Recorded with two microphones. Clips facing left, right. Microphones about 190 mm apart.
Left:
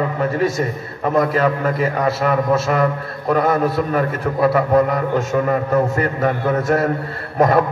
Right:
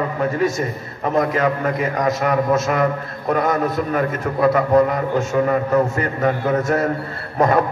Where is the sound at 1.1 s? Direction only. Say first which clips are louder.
Left 1 dB; 35° left (ahead or behind).